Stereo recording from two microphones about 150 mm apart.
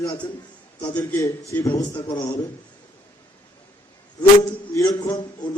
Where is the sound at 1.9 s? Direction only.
30° left (ahead or behind).